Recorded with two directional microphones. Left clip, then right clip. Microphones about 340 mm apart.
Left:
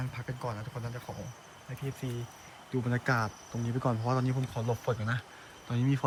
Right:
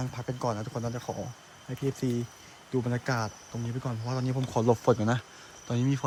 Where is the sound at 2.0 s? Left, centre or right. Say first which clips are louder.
Right 9 dB; right.